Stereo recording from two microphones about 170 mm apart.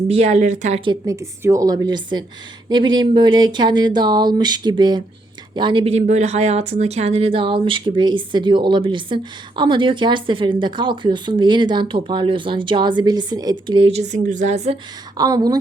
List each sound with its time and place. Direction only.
0.1 s speech: 40° right (ahead or behind)
0.9 s speech: 20° right (ahead or behind); by 14.8 s 40° right (ahead or behind)
15.2 s speech: 20° right (ahead or behind)